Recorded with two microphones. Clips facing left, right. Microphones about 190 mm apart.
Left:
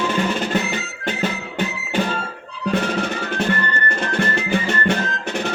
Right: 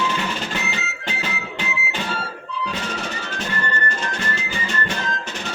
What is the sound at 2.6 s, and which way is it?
Music, 55° left (ahead or behind).